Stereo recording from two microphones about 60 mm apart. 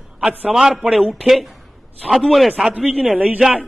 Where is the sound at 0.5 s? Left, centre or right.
Centre.